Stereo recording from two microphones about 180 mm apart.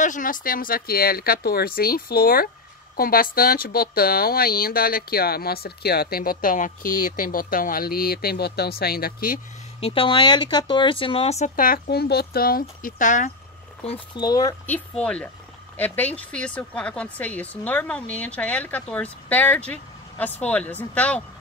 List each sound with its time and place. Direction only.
0.0 s speech: 45° left (ahead or behind)
9.8 s speech: 30° left (ahead or behind)
13.8 s speech: 25° left (ahead or behind)
14.7 s a woman's voice: 5° left (ahead or behind)